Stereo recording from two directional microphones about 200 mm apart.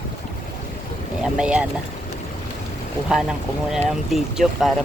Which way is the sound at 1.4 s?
5° right (ahead or behind).